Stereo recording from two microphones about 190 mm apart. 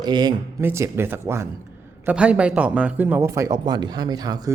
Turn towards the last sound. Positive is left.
turn(degrees=-20)  # may be behind; listen again after turning